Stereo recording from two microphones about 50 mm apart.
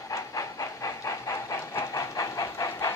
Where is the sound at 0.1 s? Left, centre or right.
Left.